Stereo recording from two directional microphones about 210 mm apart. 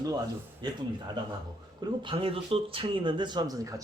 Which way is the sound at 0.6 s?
20° right (ahead or behind).